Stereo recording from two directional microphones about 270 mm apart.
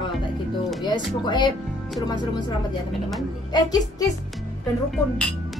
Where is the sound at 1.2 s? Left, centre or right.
Centre.